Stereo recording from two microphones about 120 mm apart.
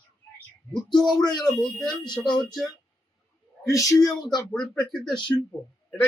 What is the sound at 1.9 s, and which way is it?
Speech, 40° left (ahead or behind).